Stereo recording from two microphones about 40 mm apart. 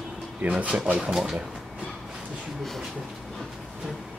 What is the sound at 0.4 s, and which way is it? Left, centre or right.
Speech, right.